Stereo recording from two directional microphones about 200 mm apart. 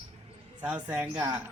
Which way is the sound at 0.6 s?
5° right (ahead or behind).